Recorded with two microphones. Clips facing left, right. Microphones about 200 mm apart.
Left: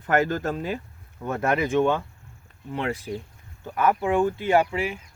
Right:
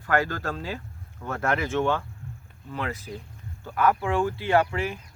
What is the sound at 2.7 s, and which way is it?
Speech, 25° left (ahead or behind).